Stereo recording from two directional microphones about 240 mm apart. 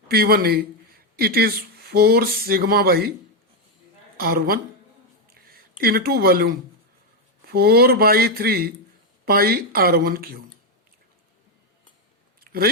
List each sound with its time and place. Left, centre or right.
0.1 s speech: right
4.2 s speech: right
5.3 s a sound: right
7.4 s speech: right
12.5 s chewing: right